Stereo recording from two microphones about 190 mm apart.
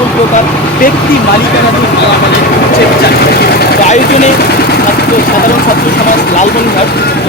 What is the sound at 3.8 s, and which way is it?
Speech, 40° left (ahead or behind).